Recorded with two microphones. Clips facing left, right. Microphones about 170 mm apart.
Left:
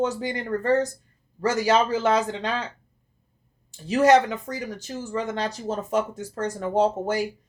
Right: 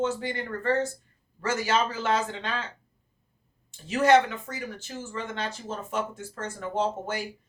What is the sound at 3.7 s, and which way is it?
Speech, 40° left (ahead or behind).